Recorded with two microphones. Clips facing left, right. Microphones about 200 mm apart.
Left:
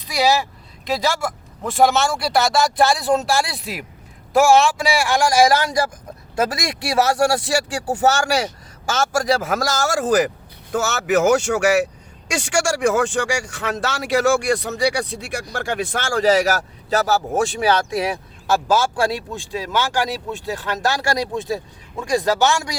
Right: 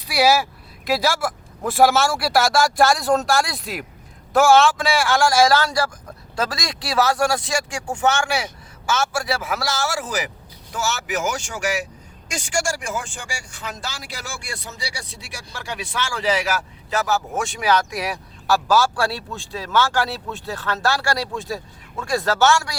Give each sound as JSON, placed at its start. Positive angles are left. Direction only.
{"t": 0.0, "sound": "a man's voice", "side_deg": -10}